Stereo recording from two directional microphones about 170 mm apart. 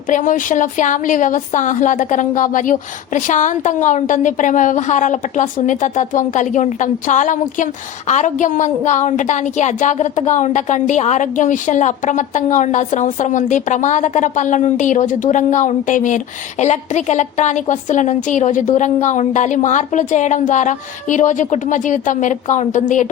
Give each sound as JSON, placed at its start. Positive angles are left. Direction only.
{"t": 0.1, "sound": "a woman's voice", "side_deg": 50}